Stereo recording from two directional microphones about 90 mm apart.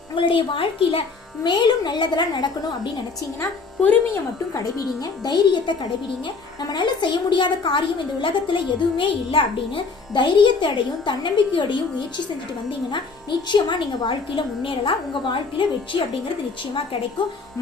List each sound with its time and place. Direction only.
0.2 s a woman's voice: 75° left (ahead or behind)
1.5 s a child's voice: 55° left (ahead or behind)
4.1 s a child's voice: 40° left (ahead or behind); by 11.8 s 65° left (ahead or behind)
13.5 s a child's voice: 55° left (ahead or behind)
17.2 s a child's voice: 65° left (ahead or behind)